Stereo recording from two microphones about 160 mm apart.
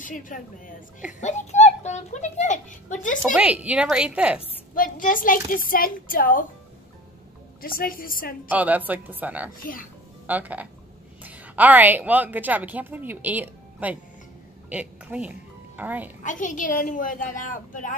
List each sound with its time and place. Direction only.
0.0 s a child's voice: 55° left (ahead or behind)
3.3 s a woman's voice: 5° right (ahead or behind)
4.7 s a woman's voice: 60° left (ahead or behind)
7.6 s a woman's voice: 65° left (ahead or behind)
8.5 s a woman's voice: 10° right (ahead or behind)
16.3 s a woman's voice: 55° left (ahead or behind)